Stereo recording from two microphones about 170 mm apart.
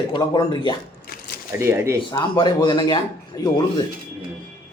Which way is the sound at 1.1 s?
65° left (ahead or behind).